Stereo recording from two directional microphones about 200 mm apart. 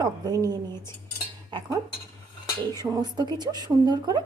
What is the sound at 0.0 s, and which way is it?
Speech, 20° right (ahead or behind).